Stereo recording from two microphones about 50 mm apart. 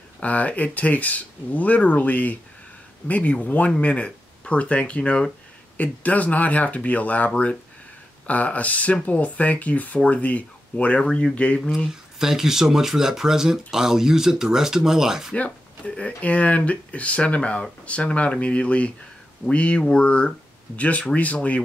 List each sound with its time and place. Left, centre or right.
0.2 s speech: left
11.0 s speech: centre
11.9 s speech: centre
16.2 s speech: left